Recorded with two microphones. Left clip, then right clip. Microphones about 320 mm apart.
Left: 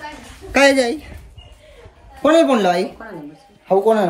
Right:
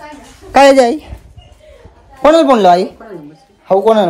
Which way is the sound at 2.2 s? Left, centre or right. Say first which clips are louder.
Right 6 dB; centre.